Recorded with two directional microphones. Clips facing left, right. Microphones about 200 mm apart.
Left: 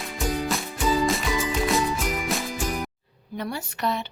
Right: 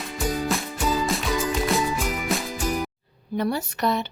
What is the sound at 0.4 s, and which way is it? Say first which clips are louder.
Music: even; centre (ahead or behind).